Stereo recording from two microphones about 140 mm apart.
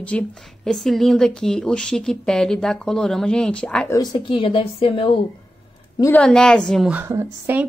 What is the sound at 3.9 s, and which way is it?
Speech, 30° left (ahead or behind).